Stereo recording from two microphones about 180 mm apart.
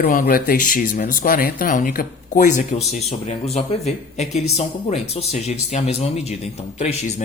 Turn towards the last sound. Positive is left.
turn(degrees=35)  # may be behind; listen again after turning